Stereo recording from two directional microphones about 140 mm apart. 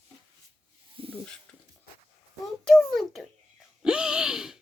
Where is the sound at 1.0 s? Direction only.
40° right (ahead or behind).